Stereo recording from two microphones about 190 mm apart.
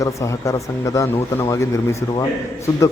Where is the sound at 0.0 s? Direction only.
15° left (ahead or behind).